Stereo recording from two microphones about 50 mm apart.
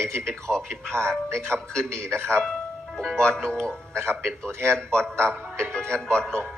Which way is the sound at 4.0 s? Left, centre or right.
Right.